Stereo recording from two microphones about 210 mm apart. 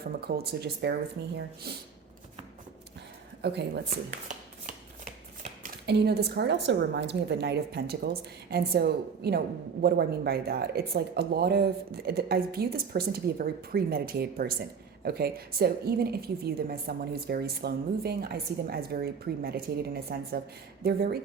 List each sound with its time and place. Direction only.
0.2 s a woman's voice: 50° right (ahead or behind)
3.4 s a woman's voice: 50° right (ahead or behind)
3.8 s shuffling cards: 35° right (ahead or behind)
5.8 s a woman's voice: 50° right (ahead or behind)